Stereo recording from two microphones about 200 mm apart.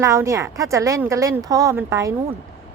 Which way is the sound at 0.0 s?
15° right (ahead or behind).